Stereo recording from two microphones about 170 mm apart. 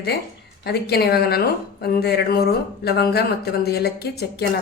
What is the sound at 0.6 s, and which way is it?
A woman's voice, 70° left (ahead or behind).